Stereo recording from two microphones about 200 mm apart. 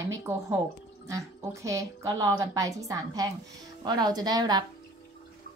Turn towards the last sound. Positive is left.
turn(degrees=-20)  # may be behind; listen again after turning